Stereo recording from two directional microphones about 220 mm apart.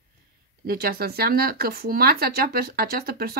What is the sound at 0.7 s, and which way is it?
A woman's voice, 40° right (ahead or behind).